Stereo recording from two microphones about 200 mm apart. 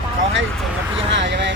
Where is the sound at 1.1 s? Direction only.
60° right (ahead or behind).